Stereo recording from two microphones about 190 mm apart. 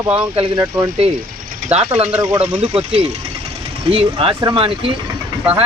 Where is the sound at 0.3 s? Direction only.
25° right (ahead or behind).